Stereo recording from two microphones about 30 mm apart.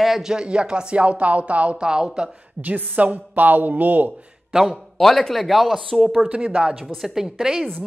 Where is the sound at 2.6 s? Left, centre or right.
Right.